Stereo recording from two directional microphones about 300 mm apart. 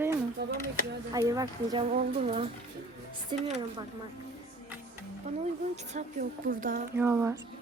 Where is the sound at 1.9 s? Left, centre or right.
Right.